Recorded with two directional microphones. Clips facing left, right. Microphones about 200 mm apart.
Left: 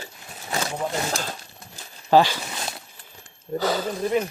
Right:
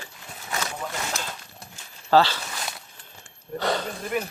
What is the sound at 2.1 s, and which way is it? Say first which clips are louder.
Speech: left 2 dB; 15° left (ahead or behind).